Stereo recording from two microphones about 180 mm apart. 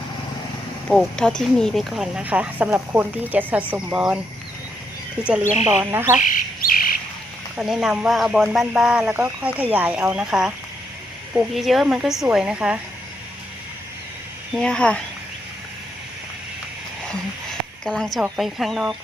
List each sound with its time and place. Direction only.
0.9 s speech: 5° left (ahead or behind)
5.6 s speech: 15° right (ahead or behind)
6.3 s bird: 50° left (ahead or behind)
7.5 s speech: 5° right (ahead or behind)
14.5 s speech: 5° left (ahead or behind)
17.8 s speech: centre (ahead or behind)